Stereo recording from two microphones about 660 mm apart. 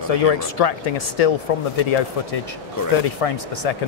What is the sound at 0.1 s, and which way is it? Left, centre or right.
Speech, left.